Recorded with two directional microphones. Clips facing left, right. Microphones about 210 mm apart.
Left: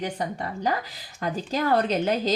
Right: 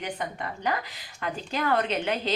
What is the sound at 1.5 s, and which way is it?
Speech, 35° left (ahead or behind).